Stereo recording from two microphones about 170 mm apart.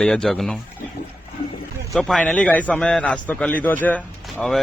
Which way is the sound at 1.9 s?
Centre (ahead or behind).